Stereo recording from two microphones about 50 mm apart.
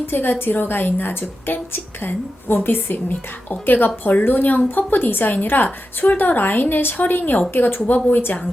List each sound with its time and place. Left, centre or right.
0.0 s a woman's voice: left